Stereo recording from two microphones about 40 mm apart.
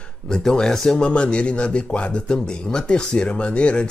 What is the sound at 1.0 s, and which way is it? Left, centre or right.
Speech, left.